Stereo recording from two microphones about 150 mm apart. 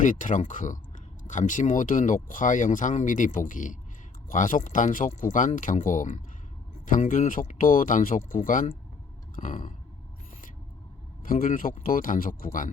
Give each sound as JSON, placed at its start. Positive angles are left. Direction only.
{"t": 0.0, "sound": "speech", "side_deg": 60}
{"t": 9.3, "sound": "a sound", "side_deg": 60}
{"t": 11.2, "sound": "speech", "side_deg": 65}